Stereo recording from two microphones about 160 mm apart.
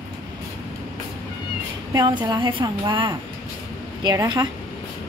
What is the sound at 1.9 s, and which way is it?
A woman's voice, 30° right (ahead or behind).